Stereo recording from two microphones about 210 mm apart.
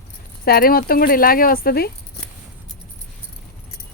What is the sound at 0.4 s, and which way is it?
Speech, 45° left (ahead or behind).